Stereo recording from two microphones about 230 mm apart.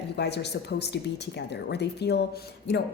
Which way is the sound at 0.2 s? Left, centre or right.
Left.